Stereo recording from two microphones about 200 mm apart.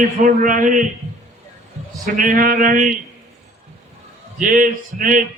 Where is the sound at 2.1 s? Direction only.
45° right (ahead or behind).